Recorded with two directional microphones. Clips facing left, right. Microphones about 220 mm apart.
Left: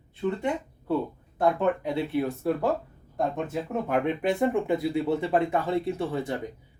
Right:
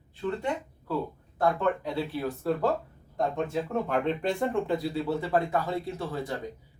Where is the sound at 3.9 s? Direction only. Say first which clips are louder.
Left 4 dB; 10° left (ahead or behind).